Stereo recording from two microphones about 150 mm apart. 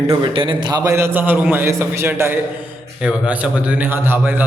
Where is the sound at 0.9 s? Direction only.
15° right (ahead or behind).